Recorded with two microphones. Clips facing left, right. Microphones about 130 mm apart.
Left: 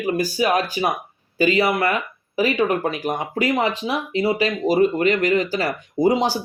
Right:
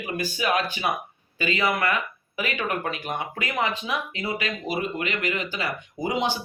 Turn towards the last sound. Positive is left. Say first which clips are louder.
# left 8 dB
turn(degrees=35)  # may be behind; listen again after turning